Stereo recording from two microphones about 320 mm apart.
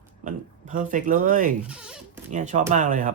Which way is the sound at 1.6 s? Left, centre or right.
Centre.